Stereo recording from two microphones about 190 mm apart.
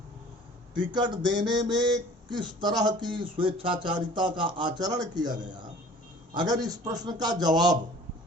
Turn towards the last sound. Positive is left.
turn(degrees=-20)  # may be behind; listen again after turning